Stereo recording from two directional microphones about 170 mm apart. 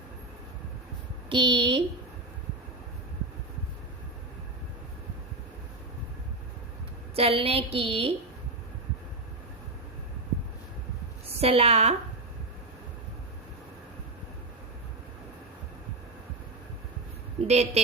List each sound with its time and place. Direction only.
1.3 s a woman's voice: 30° right (ahead or behind)
7.2 s a woman's voice: 35° right (ahead or behind)
11.3 s a woman's voice: 35° right (ahead or behind)
17.4 s a woman's voice: 40° right (ahead or behind)